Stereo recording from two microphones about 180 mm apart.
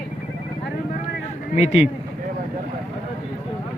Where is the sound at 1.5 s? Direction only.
40° left (ahead or behind).